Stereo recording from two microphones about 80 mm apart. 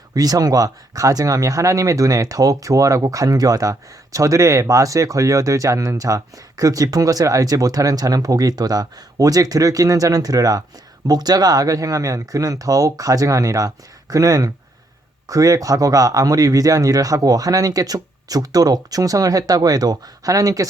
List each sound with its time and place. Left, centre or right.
0.1 s speech: right